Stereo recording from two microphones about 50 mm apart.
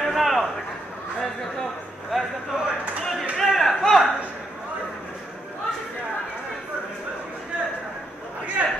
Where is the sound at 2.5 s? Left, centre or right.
Centre.